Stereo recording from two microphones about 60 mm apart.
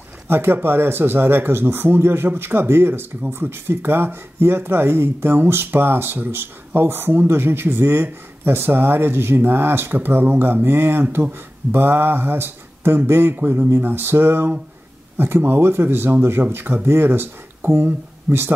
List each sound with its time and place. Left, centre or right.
0.3 s speech: right